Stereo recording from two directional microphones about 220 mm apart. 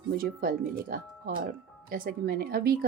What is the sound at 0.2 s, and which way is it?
Speech, 40° right (ahead or behind).